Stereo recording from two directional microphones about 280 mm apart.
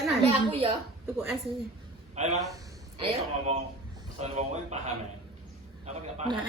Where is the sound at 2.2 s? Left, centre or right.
Right.